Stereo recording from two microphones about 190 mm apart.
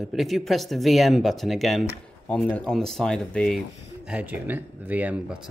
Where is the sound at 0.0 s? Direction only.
Centre (ahead or behind).